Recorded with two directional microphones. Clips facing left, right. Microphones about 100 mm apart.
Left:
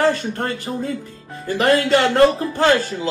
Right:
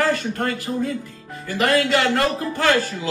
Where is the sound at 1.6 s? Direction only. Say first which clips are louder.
Left 3 dB; 35° left (ahead or behind).